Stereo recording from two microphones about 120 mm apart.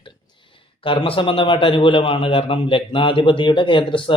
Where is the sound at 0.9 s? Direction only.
45° left (ahead or behind).